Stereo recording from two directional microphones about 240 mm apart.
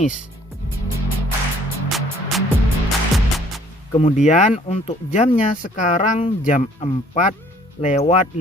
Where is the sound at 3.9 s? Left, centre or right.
Left.